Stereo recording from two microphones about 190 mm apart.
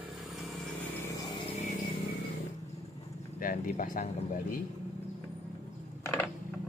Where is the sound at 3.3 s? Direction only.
45° left (ahead or behind).